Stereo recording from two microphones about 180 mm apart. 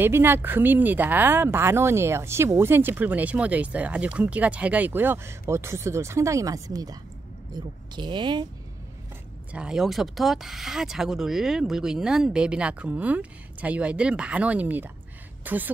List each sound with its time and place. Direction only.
0.0 s speech: 10° right (ahead or behind)
9.5 s a woman's voice: 5° right (ahead or behind)